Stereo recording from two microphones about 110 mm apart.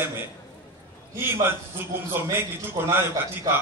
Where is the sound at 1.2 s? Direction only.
20° right (ahead or behind).